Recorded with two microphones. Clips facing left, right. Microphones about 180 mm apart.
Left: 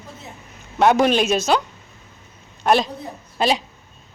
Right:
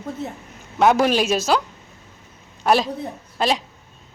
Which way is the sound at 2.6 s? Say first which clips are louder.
Even; 5° right (ahead or behind).